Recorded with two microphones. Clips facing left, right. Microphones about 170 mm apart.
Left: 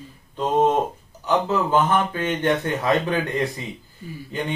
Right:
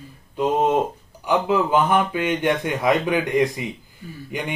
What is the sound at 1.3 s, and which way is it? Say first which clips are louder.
Speech: right 1 dB; 10° right (ahead or behind).